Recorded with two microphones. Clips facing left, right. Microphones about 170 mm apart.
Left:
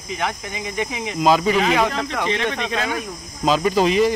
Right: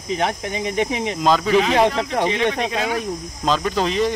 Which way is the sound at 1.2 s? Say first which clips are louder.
Even; 5° left (ahead or behind).